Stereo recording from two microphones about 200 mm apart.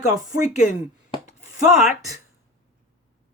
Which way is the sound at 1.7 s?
Centre (ahead or behind).